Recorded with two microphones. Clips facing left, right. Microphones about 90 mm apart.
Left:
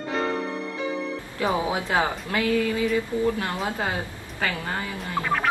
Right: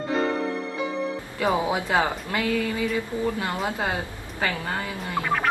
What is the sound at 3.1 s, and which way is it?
Speech, 20° right (ahead or behind).